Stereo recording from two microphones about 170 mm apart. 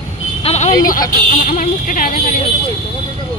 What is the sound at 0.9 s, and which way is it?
Speech, 50° left (ahead or behind).